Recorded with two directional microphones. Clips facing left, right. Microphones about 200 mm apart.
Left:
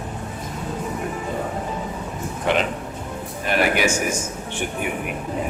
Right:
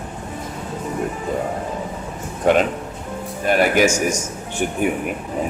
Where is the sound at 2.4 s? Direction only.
45° right (ahead or behind).